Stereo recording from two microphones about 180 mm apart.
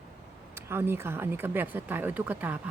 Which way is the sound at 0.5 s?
15° right (ahead or behind).